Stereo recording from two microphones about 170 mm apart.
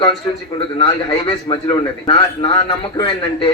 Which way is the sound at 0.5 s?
35° left (ahead or behind).